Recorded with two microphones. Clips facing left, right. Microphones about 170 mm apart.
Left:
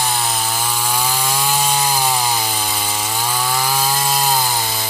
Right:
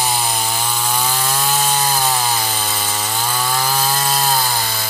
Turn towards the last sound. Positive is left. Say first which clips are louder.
# left 1 dB
turn(degrees=15)  # may be behind; listen again after turning